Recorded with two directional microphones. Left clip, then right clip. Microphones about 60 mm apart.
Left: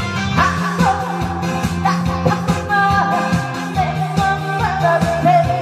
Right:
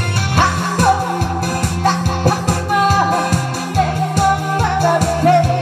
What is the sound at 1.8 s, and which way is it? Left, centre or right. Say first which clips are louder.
Music: right 2 dB; right.